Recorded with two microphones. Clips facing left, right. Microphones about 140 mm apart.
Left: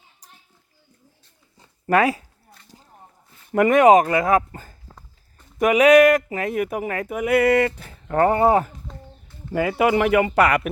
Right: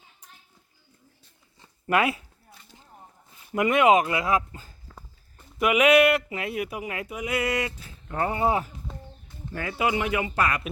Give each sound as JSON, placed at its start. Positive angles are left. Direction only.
{"t": 1.5, "sound": "a sound", "side_deg": 40}
{"t": 3.5, "sound": "speech", "side_deg": 50}
{"t": 5.5, "sound": "speech", "side_deg": 40}
{"t": 9.5, "sound": "speech", "side_deg": 80}